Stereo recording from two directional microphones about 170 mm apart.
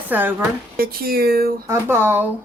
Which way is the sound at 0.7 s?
60° right (ahead or behind).